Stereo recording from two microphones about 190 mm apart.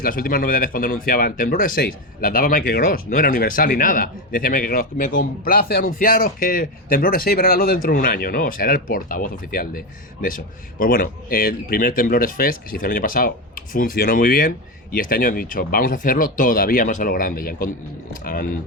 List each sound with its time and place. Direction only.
0.0 s speech: 50° left (ahead or behind)